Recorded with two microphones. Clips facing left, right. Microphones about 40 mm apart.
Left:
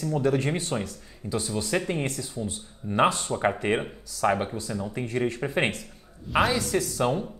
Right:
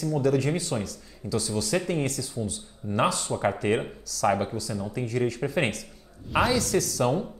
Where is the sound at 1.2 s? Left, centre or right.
Centre; by 3.3 s left.